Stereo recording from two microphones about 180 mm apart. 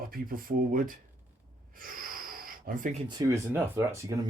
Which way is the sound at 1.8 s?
50° right (ahead or behind).